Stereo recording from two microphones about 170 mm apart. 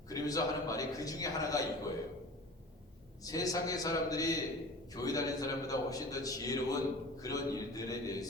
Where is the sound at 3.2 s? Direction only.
20° left (ahead or behind).